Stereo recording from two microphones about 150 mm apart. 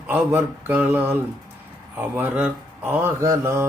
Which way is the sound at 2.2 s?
10° right (ahead or behind).